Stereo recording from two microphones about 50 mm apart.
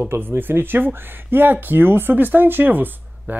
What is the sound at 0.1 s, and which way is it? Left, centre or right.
Speech, right.